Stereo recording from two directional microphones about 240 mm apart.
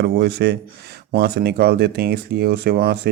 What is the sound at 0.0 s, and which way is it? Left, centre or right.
Speech, right.